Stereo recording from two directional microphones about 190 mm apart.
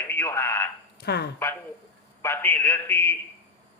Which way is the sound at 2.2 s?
10° left (ahead or behind).